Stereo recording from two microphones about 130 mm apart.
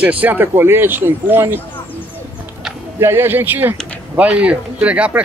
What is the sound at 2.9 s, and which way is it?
Speech, 20° right (ahead or behind).